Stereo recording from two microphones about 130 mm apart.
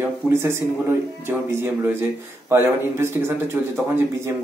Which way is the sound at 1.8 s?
15° right (ahead or behind).